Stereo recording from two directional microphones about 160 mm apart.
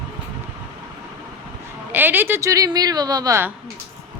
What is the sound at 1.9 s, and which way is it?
Speech, 10° right (ahead or behind).